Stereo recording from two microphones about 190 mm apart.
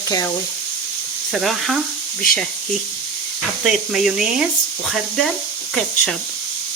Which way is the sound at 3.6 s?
Centre (ahead or behind).